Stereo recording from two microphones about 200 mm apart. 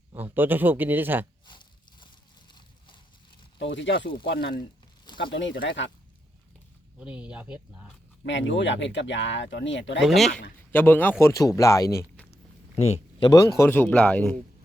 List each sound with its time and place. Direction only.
0.1 s speech: 10° right (ahead or behind)
1.5 s a sound: 25° left (ahead or behind)
3.6 s speech: 65° left (ahead or behind)
7.0 s speech: 5° right (ahead or behind)
8.2 s speech: 65° left (ahead or behind)
10.0 s speech: centre (ahead or behind)
12.3 s speech: 30° left (ahead or behind); by 14.3 s 10° left (ahead or behind)